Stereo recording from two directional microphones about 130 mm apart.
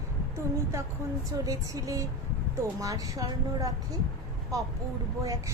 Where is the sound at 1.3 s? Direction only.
25° right (ahead or behind).